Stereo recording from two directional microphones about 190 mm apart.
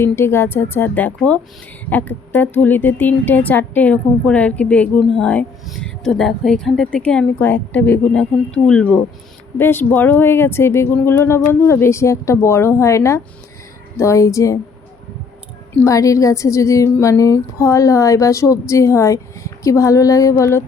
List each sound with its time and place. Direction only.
0.0 s a woman's voice: 15° left (ahead or behind)
15.7 s a woman's voice: 15° left (ahead or behind)